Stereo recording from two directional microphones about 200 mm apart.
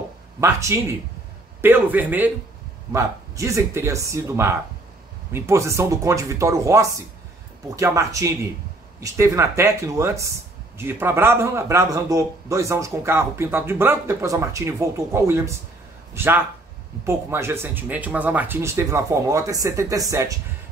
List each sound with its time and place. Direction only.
0.4 s a man's voice: 15° right (ahead or behind)